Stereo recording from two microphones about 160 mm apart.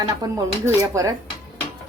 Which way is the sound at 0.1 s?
20° right (ahead or behind).